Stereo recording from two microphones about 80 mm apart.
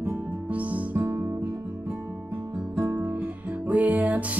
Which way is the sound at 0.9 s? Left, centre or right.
Right.